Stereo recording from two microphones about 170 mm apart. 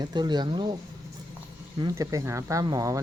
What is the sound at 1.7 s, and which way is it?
Speech, 20° right (ahead or behind).